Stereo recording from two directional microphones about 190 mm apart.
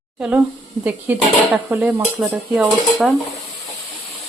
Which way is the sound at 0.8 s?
10° right (ahead or behind).